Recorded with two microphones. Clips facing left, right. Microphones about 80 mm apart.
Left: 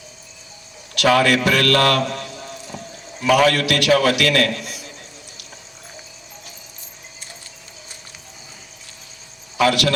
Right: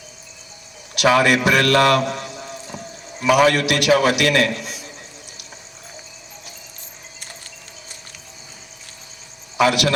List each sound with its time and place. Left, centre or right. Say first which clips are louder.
0.9 s a man's voice: even; centre
9.6 s a man's voice: even; centre